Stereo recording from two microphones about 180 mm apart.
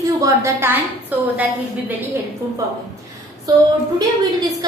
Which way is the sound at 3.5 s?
20° right (ahead or behind).